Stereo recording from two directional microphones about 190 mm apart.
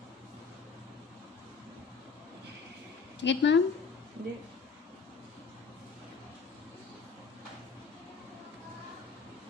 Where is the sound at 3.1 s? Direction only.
70° left (ahead or behind).